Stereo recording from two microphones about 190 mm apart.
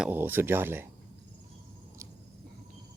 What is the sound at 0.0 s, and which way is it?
Speech, 10° right (ahead or behind).